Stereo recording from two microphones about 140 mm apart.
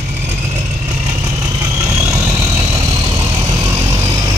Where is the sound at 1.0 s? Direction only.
25° right (ahead or behind).